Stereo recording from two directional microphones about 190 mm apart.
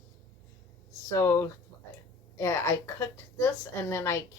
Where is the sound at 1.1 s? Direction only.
15° left (ahead or behind).